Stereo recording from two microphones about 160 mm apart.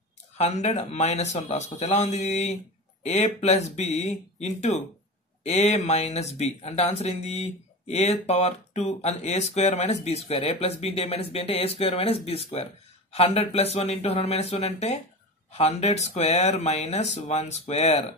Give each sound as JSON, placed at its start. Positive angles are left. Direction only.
{"t": 0.4, "sound": "speech", "side_deg": 45}